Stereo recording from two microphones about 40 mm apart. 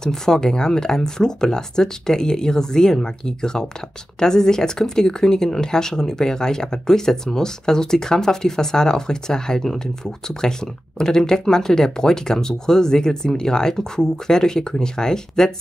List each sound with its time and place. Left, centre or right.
0.0 s speech: centre